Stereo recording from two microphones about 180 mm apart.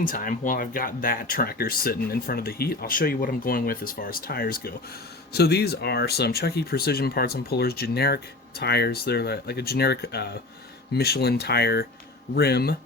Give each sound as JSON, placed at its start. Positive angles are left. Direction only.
{"t": 0.0, "sound": "speech", "side_deg": 50}